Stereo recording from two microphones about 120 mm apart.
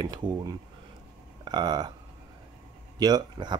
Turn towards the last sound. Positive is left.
turn(degrees=-35)  # may be behind; listen again after turning